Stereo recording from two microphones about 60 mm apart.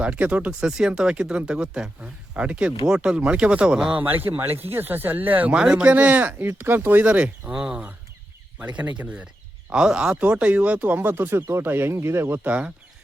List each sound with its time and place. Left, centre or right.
0.0 s speech: right
3.9 s speech: right
5.5 s speech: centre
5.9 s speech: right
7.5 s speech: centre
8.5 s speech: right
12.4 s speech: right